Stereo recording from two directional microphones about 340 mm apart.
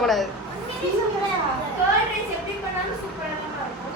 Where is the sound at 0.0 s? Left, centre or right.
Centre.